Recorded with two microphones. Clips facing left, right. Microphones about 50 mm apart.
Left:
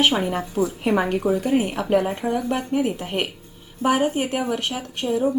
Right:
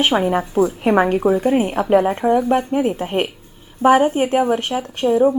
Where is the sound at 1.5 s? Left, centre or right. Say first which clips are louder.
Right 5 dB; right.